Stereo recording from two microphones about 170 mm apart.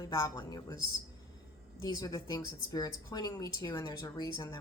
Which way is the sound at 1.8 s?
20° left (ahead or behind).